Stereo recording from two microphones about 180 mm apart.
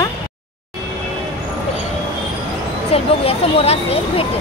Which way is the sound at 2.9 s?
35° left (ahead or behind).